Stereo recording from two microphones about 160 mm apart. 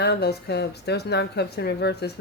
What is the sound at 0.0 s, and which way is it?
A woman's voice, 90° left.